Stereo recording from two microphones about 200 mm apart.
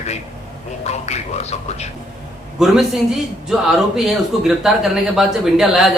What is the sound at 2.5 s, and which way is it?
A man's voice, centre (ahead or behind).